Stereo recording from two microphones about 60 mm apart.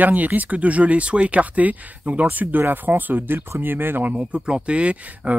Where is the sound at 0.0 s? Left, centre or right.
Right.